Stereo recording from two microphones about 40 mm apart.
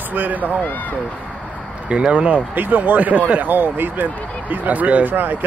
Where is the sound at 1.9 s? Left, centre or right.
Right.